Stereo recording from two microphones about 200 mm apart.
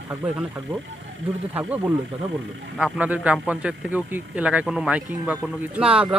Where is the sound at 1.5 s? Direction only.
10° right (ahead or behind).